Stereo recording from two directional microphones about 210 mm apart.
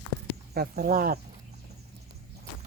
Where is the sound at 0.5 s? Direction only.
45° right (ahead or behind).